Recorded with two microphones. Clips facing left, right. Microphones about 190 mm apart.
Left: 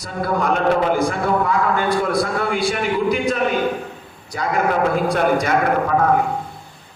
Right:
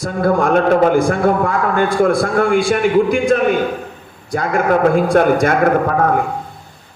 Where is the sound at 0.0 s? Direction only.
50° right (ahead or behind).